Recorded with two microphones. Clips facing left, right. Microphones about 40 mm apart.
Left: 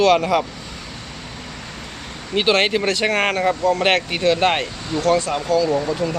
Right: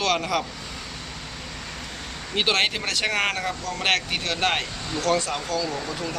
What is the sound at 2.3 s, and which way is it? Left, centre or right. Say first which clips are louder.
Speech: left 6 dB; centre.